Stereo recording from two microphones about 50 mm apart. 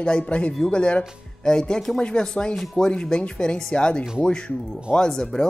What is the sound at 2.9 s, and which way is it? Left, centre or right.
A man's voice, centre.